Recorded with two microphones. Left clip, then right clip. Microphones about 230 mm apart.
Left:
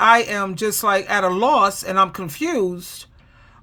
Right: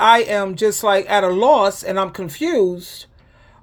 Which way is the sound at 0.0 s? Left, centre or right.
Centre.